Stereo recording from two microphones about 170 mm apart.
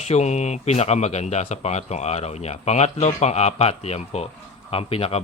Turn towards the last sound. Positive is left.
turn(degrees=35)  # may be behind; listen again after turning